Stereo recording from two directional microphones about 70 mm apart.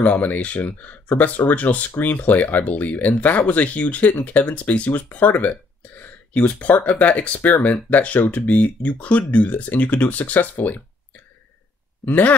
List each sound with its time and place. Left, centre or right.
0.0 s speech: left
12.0 s speech: left